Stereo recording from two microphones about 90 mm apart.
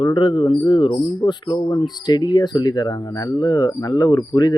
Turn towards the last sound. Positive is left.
turn(degrees=50)  # may be behind; listen again after turning